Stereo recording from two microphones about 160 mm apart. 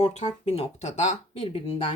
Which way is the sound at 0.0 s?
45° left (ahead or behind).